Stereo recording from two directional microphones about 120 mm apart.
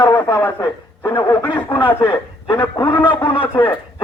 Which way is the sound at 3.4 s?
15° left (ahead or behind).